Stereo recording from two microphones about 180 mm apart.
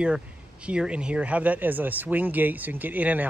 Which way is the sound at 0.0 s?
5° right (ahead or behind).